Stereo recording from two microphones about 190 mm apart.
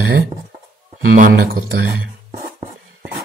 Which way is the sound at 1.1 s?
50° right (ahead or behind).